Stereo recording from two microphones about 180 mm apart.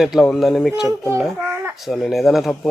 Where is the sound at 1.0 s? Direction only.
15° left (ahead or behind).